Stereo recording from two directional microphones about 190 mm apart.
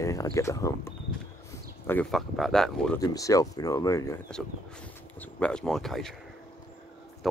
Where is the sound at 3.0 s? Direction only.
20° left (ahead or behind).